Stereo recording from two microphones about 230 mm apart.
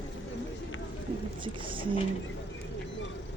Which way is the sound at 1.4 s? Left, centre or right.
Right.